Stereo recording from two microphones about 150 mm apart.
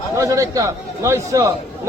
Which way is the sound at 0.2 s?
20° right (ahead or behind).